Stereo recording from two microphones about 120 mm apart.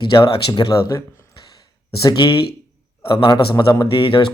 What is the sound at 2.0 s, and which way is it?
Speech, 30° left (ahead or behind).